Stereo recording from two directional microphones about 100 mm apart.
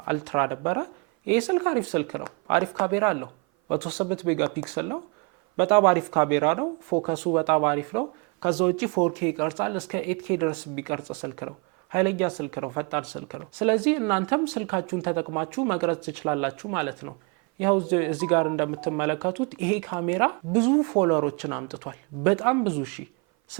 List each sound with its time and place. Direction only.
0.0 s speech: 15° right (ahead or behind)